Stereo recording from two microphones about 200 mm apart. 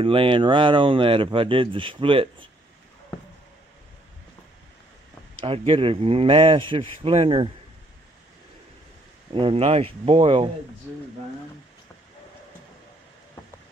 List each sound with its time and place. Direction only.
0.0 s speech: 25° right (ahead or behind)
5.4 s speech: 25° right (ahead or behind)
9.3 s speech: 25° right (ahead or behind)